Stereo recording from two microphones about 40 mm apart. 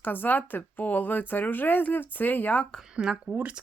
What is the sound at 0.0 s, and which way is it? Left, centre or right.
Speech, left.